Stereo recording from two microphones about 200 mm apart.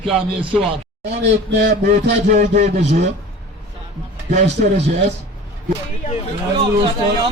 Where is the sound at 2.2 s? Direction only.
40° right (ahead or behind).